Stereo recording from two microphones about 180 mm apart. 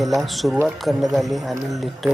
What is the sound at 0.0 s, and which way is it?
Speech, centre (ahead or behind).